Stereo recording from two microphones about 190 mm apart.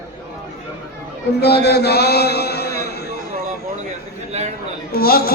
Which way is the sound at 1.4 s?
60° left (ahead or behind).